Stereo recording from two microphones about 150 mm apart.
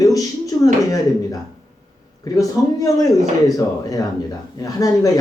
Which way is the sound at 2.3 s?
25° left (ahead or behind).